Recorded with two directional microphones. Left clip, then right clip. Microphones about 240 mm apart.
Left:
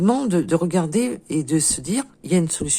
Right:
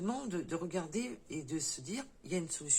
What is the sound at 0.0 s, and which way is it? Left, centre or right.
Speech, left.